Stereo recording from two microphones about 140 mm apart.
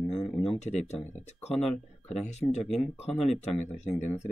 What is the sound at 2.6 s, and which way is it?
Speech, centre (ahead or behind).